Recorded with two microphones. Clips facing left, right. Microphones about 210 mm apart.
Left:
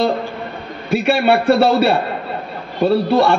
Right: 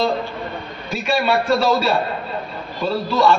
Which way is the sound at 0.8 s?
65° left (ahead or behind).